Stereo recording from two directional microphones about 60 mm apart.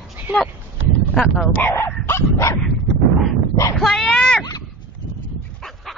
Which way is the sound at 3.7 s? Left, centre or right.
Centre.